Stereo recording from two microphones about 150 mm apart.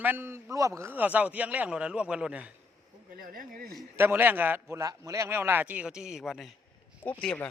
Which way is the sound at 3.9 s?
15° right (ahead or behind).